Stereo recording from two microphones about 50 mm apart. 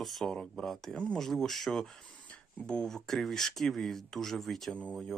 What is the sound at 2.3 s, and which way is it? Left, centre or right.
Music, left.